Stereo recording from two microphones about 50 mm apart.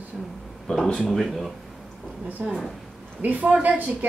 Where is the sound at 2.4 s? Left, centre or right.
Right.